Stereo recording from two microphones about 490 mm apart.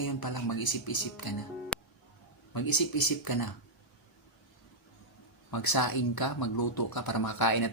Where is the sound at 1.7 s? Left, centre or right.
Centre.